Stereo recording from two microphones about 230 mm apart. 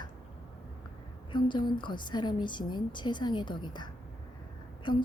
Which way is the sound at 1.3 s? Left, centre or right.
Centre.